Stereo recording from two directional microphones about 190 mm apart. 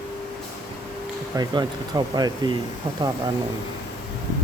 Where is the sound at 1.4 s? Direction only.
20° right (ahead or behind).